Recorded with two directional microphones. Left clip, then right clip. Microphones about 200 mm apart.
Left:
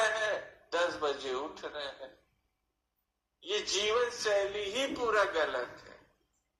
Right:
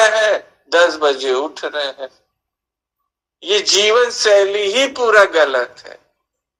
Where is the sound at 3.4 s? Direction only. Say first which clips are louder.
Right 18 dB; 50° right (ahead or behind).